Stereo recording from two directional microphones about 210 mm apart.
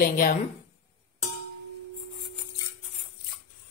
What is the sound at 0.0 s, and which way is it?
Speech, 45° left (ahead or behind).